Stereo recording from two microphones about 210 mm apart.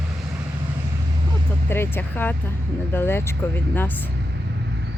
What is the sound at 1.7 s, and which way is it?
Speech, 10° left (ahead or behind).